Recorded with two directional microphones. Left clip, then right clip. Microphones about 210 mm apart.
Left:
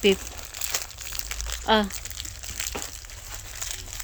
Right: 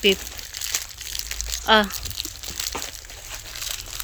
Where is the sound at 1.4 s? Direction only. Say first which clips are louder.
Right 5 dB; 10° left (ahead or behind).